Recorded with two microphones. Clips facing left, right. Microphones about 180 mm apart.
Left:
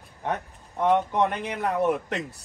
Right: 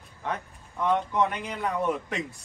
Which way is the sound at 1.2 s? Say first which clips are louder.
Left 2 dB; 60° left (ahead or behind).